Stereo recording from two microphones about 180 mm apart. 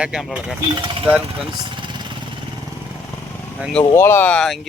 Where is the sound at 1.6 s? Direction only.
25° right (ahead or behind).